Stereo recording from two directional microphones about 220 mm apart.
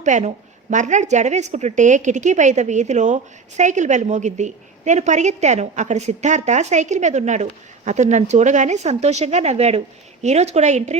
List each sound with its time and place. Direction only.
0.0 s a woman's voice: 30° right (ahead or behind)